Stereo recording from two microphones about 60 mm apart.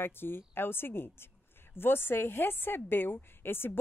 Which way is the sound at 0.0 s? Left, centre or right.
Left.